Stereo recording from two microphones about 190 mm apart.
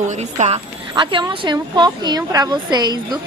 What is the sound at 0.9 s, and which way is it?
A woman's voice, 25° right (ahead or behind).